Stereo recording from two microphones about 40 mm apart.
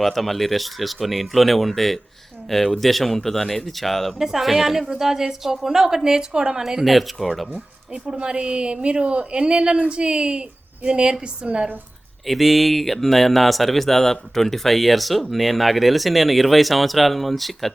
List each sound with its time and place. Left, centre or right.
0.0 s speech: centre
4.2 s a woman's voice: centre
6.8 s speech: centre
7.9 s a woman's voice: right
12.2 s speech: centre